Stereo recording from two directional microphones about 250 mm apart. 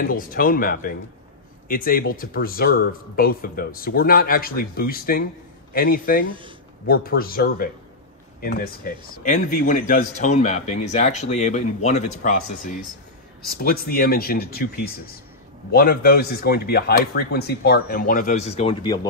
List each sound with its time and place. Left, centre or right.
0.0 s a man's voice: left
15.7 s speech: left